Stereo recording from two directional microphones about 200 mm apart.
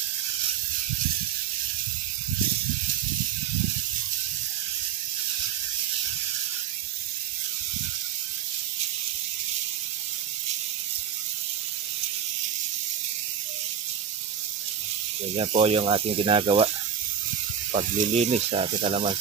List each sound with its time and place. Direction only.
15.3 s speech: 30° right (ahead or behind)
17.7 s speech: 35° right (ahead or behind)